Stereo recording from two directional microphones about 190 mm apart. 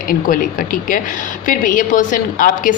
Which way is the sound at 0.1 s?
45° left (ahead or behind).